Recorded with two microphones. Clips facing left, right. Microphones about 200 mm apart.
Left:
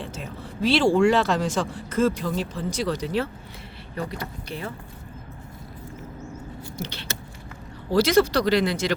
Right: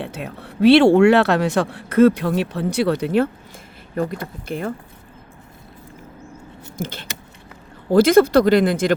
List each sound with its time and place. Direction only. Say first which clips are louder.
0.0 s speech: right 5 dB; 65° right (ahead or behind)
6.7 s speech: right 6 dB; 50° right (ahead or behind)